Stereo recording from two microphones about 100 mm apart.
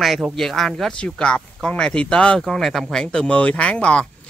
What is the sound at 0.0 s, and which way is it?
Speech, centre (ahead or behind).